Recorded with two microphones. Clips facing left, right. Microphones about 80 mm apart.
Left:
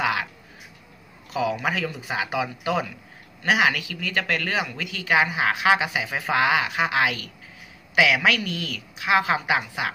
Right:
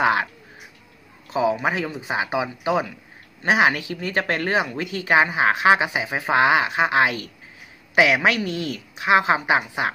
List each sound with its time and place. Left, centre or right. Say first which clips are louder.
0.0 s speech: right 5 dB; right
1.3 s a woman's voice: right 4 dB; right
3.4 s a woman's voice: right 3 dB; right